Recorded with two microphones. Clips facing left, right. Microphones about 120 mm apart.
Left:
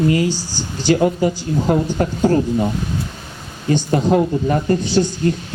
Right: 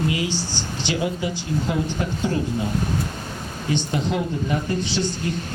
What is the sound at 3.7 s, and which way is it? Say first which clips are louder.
A man's voice: left 8 dB; 45° left (ahead or behind).